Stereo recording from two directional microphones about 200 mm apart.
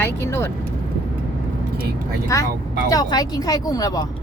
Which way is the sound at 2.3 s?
15° left (ahead or behind).